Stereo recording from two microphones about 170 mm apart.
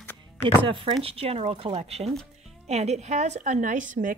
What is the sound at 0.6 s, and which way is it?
A woman's voice, 30° right (ahead or behind).